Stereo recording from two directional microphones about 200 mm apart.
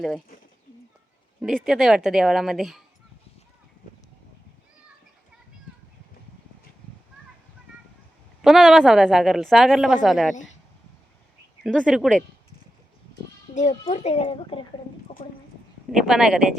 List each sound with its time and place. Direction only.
1.4 s a woman's voice: centre (ahead or behind)
8.4 s a woman's voice: centre (ahead or behind)
11.6 s a woman's voice: 5° left (ahead or behind)
13.5 s a child's voice: 40° left (ahead or behind)
15.2 s horse: 35° left (ahead or behind)
15.9 s a woman's voice: centre (ahead or behind)